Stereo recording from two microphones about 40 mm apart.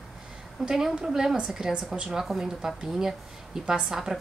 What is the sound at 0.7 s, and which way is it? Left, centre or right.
A woman's voice, centre.